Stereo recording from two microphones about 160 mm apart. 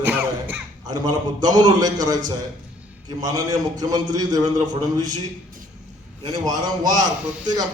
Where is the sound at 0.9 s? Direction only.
25° right (ahead or behind).